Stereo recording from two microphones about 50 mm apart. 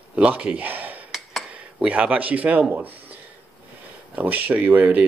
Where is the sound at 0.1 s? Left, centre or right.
Right.